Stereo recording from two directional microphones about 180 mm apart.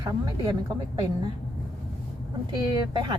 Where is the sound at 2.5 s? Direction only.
25° right (ahead or behind).